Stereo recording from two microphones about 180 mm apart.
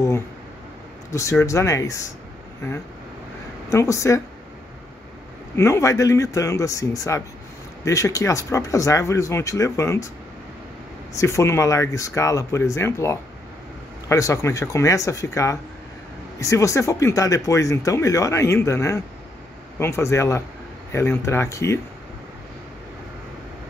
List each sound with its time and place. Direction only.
1.4 s speech: 15° left (ahead or behind)
3.7 s speech: 15° left (ahead or behind)
5.6 s speech: 15° left (ahead or behind)
11.1 s speech: 15° left (ahead or behind)